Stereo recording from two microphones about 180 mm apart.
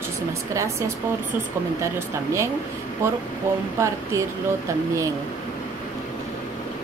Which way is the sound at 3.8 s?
15° right (ahead or behind).